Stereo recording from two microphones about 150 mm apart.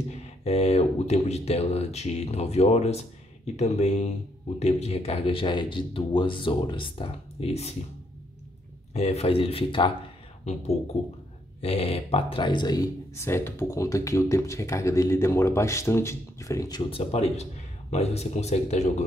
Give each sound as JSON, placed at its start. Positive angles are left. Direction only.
{"t": 0.1, "sound": "speech", "side_deg": 45}
{"t": 8.9, "sound": "speech", "side_deg": 45}
{"t": 11.6, "sound": "speech", "side_deg": 40}
{"t": 16.9, "sound": "speech", "side_deg": 40}